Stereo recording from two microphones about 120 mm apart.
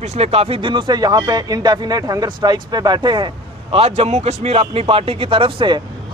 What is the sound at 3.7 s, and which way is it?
Speech, 60° right (ahead or behind).